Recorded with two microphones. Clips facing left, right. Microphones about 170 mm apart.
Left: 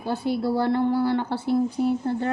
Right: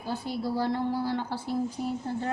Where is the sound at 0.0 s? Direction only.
65° left (ahead or behind).